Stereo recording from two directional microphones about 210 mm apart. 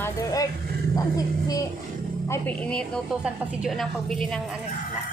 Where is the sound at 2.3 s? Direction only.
5° left (ahead or behind).